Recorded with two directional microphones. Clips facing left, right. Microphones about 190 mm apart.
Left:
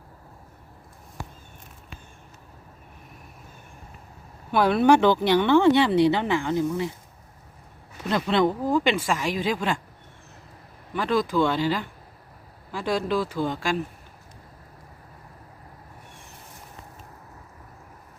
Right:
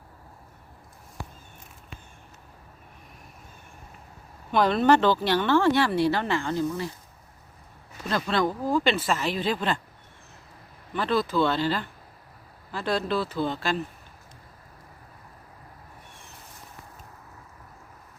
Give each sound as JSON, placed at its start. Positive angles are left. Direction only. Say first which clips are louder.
{"t": 4.5, "sound": "speech", "louder": "left 2 dB", "side_deg": 10}
{"t": 8.0, "sound": "speech", "louder": "left 4 dB", "side_deg": 20}
{"t": 10.9, "sound": "speech", "louder": "left 2 dB", "side_deg": 10}